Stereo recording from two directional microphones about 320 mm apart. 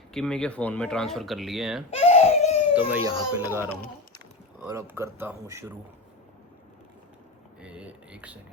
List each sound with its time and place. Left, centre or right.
0.1 s speech: centre
1.9 s crying: centre
2.7 s speech: centre
7.6 s speech: centre